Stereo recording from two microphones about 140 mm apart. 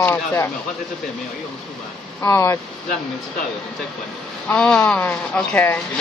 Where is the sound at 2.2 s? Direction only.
20° left (ahead or behind).